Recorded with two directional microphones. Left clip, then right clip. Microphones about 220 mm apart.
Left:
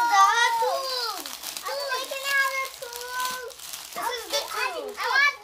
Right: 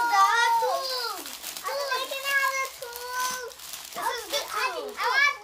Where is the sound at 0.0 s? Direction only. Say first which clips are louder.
Left 2 dB; 10° left (ahead or behind).